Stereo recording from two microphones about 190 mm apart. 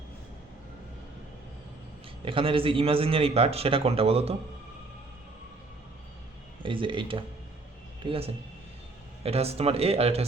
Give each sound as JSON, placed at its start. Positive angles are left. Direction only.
{"t": 2.2, "sound": "a man's voice", "side_deg": -30}
{"t": 6.6, "sound": "a man's voice", "side_deg": -25}